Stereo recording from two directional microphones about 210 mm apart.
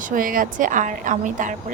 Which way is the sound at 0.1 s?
40° right (ahead or behind).